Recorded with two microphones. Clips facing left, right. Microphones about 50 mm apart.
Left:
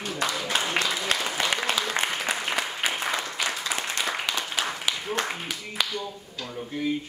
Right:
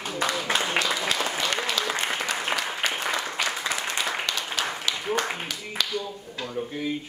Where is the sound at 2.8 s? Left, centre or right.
Centre.